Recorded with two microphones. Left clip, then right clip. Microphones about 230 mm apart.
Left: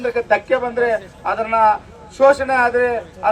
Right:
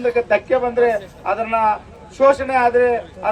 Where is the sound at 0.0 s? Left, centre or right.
Left.